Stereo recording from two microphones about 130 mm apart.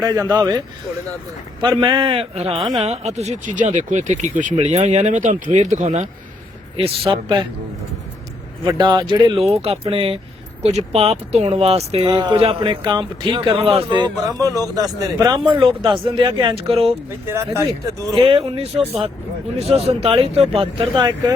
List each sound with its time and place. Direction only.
0.0 s speech: 30° right (ahead or behind)
1.8 s speech: 40° right (ahead or behind)
2.6 s speech: 40° right (ahead or behind)
2.8 s speech: 55° right (ahead or behind); by 4.5 s 70° right (ahead or behind)
4.5 s speech: 55° right (ahead or behind)
6.7 s speech: 45° right (ahead or behind)
8.6 s speech: 35° right (ahead or behind)
10.6 s speech: 55° right (ahead or behind)
12.0 s speech: 30° right (ahead or behind)
12.4 s speech: 45° right (ahead or behind); by 15.4 s 30° right (ahead or behind)
15.6 s speech: 40° right (ahead or behind)
17.2 s speech: 20° right (ahead or behind)
18.2 s speech: 45° right (ahead or behind)